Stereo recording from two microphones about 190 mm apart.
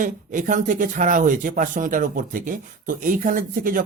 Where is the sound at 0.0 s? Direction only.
45° right (ahead or behind).